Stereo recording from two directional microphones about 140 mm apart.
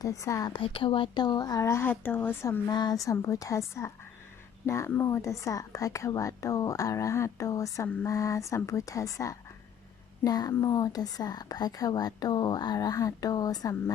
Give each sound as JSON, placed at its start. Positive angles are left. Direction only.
{"t": 0.0, "sound": "a woman's voice", "side_deg": 25}
{"t": 0.6, "sound": "a woman's voice", "side_deg": 40}